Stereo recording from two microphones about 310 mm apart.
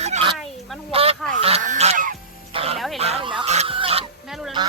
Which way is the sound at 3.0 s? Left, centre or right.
Centre.